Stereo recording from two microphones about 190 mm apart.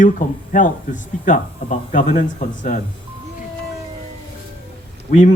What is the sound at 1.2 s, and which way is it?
Speech, 40° left (ahead or behind).